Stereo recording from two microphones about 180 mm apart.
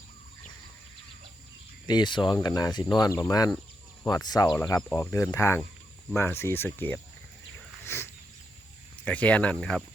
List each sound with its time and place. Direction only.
1.9 s speech: 25° left (ahead or behind)
7.9 s a sound: 15° left (ahead or behind)
9.0 s speech: 5° left (ahead or behind)